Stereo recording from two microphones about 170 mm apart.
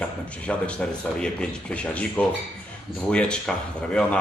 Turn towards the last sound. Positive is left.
turn(degrees=5)  # may be behind; listen again after turning